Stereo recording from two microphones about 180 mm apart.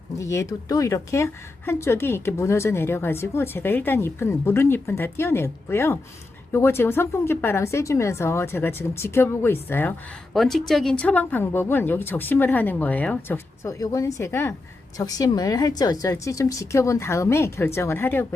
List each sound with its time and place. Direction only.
0.2 s speech: 15° left (ahead or behind)
10.3 s speech: centre (ahead or behind)